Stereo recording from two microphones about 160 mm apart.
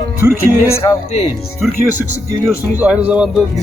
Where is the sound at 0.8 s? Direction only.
25° left (ahead or behind).